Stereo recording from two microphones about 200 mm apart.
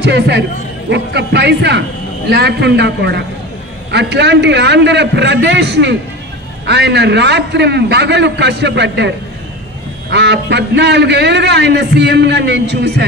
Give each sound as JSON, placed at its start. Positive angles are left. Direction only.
{"t": 0.0, "sound": "a man's voice", "side_deg": -60}
{"t": 10.1, "sound": "a man's voice", "side_deg": -60}